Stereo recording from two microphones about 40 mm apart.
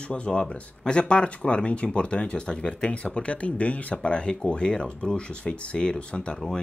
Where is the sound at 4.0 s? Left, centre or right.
Left.